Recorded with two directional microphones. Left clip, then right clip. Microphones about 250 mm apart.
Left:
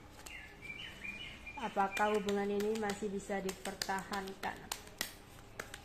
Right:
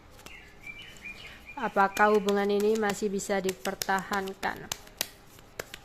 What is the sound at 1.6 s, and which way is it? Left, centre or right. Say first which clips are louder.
Speech: right 10 dB; right.